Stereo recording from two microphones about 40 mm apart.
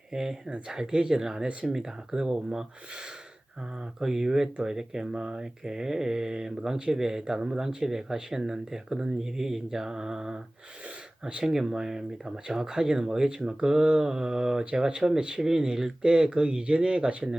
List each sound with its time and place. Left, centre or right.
0.1 s speech: centre
4.0 s speech: centre; by 17.2 s right